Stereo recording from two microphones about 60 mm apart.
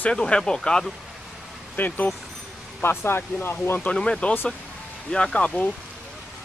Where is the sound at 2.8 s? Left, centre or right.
Left.